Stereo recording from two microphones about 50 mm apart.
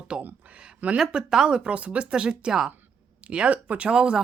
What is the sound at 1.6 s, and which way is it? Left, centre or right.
Speech, right.